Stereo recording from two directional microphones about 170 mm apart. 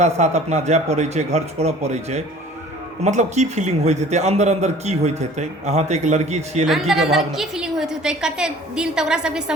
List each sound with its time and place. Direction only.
0.0 s a man's voice: 40° right (ahead or behind)
6.7 s a woman's voice: centre (ahead or behind)